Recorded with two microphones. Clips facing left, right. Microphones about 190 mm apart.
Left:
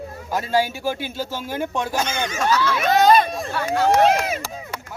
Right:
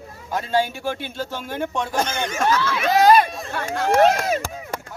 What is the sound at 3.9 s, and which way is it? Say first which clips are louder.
Speech: right 1 dB; 50° right (ahead or behind).